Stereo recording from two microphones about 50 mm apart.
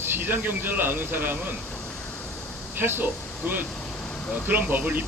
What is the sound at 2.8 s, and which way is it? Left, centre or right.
Speech, right.